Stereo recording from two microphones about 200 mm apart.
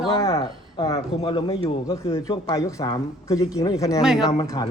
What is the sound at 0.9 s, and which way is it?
A man's voice, 30° left (ahead or behind).